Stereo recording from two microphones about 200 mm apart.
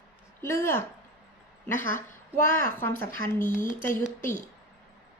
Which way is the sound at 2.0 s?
10° left (ahead or behind).